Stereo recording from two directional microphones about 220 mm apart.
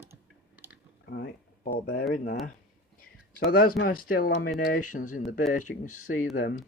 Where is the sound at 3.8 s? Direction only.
40° left (ahead or behind).